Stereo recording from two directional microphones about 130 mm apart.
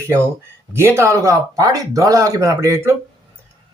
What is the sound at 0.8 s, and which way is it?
Speech, 20° right (ahead or behind).